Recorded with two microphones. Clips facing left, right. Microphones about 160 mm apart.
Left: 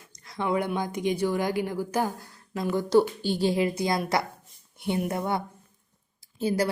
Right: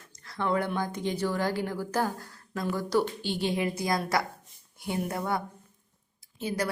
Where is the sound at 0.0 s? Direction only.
15° left (ahead or behind).